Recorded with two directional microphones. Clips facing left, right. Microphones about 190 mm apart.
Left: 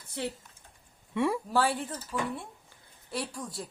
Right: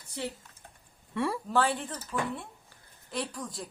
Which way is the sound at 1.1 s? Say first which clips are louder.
Left 1 dB; 10° left (ahead or behind).